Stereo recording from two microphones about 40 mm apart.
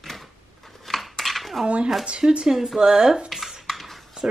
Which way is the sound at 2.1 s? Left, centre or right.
Right.